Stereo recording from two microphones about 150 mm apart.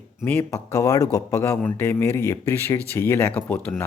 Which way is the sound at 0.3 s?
15° left (ahead or behind).